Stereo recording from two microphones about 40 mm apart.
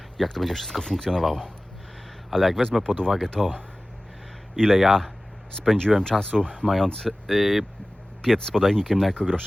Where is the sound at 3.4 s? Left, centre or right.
Centre.